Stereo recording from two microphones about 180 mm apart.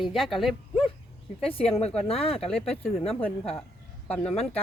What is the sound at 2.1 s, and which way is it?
Speech, 30° left (ahead or behind).